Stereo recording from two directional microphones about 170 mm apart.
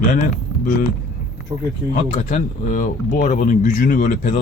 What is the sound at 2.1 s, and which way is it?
Speech, 45° left (ahead or behind).